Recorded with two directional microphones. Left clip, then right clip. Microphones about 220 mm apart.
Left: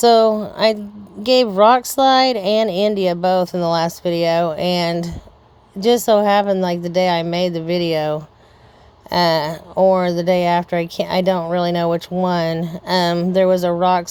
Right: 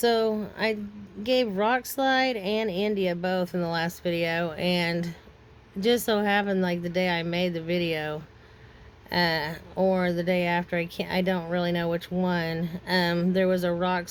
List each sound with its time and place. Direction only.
0.0 s speech: 30° left (ahead or behind)